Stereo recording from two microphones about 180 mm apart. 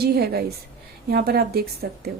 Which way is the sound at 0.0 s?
60° right (ahead or behind).